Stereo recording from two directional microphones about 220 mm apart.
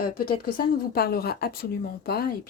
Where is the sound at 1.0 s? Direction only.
45° left (ahead or behind).